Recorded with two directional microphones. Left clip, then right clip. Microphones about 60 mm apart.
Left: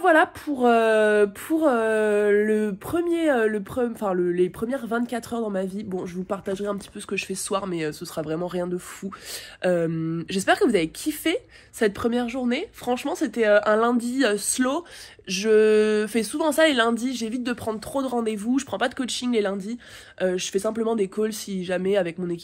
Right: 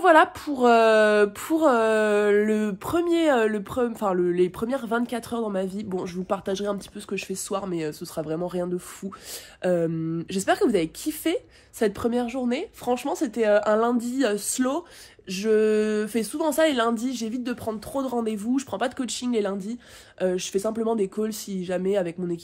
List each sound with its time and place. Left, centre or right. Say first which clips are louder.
0.0 s a woman's voice: right 1 dB; right; by 5.7 s centre
5.9 s a woman's voice: right 2 dB; right
15.2 s a woman's voice: left 3 dB; centre
16.9 s speech: left 1 dB; right
17.3 s speech: left 2 dB; centre
18.0 s speech: left 1 dB; right
20.2 s speech: left 1 dB; right
22.2 s speech: even; centre